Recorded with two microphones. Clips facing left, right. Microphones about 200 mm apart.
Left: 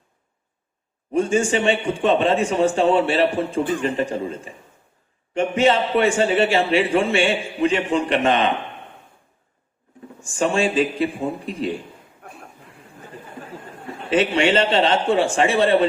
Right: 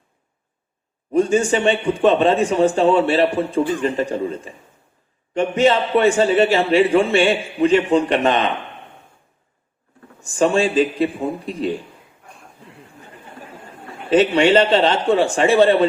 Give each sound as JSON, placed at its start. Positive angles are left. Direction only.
{"t": 1.1, "sound": "a man's voice", "side_deg": -35}
{"t": 10.2, "sound": "a man's voice", "side_deg": -35}
{"t": 12.2, "sound": "a sound", "side_deg": 60}
{"t": 14.1, "sound": "a man's voice", "side_deg": -40}